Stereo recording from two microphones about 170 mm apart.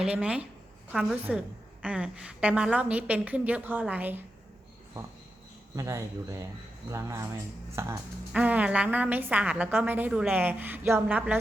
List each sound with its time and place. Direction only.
0.0 s a woman's voice: 5° right (ahead or behind)
5.7 s a woman's voice: 20° right (ahead or behind)